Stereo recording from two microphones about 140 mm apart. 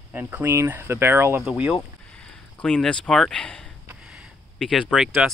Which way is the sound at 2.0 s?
5° left (ahead or behind).